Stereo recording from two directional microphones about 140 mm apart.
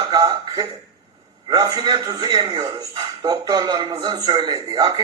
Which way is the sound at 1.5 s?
30° right (ahead or behind).